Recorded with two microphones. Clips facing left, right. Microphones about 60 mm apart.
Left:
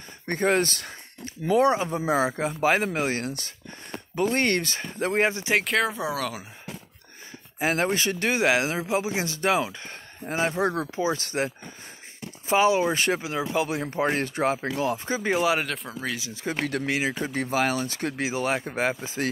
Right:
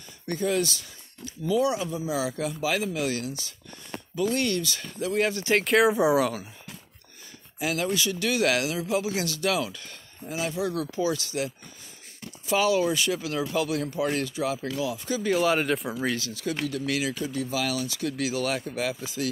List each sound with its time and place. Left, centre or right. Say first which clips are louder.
0.3 s speech: left 3 dB; left
2.2 s speech: left 5 dB; left
5.3 s speech: right 1 dB; centre
5.6 s speech: right 5 dB; centre
5.9 s speech: right 8 dB; centre
7.5 s speech: left 3 dB; left
10.2 s speech: left 4 dB; left
13.8 s speech: left 2 dB; left
15.6 s speech: right 4 dB; centre
16.3 s speech: left 1 dB; left
17.3 s speech: left 4 dB; left